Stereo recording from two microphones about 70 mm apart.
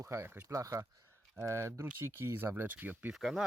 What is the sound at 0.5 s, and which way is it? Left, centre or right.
Speech, right.